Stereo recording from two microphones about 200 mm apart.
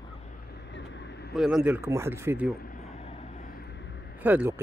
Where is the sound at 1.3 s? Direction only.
Centre (ahead or behind).